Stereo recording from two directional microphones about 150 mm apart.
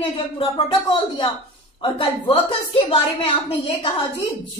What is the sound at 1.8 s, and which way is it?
A woman's voice, 40° left (ahead or behind).